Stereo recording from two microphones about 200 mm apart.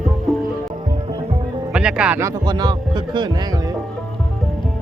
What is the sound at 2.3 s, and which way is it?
Speech, 20° right (ahead or behind).